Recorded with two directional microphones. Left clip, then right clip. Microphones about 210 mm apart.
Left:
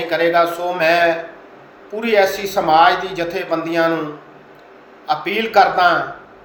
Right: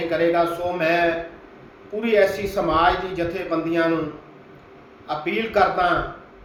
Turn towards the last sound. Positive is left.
turn(degrees=-5)  # may be behind; listen again after turning